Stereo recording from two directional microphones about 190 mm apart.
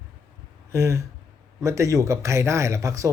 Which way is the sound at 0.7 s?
15° right (ahead or behind).